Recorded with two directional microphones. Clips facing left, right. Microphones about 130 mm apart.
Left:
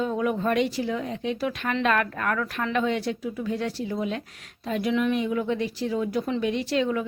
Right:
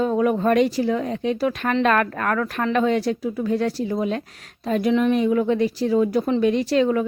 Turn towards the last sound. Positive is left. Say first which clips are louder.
# right 6 dB
turn(degrees=-45)  # may be behind; listen again after turning